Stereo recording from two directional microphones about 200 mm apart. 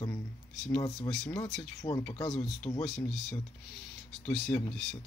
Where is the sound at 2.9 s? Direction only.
Centre (ahead or behind).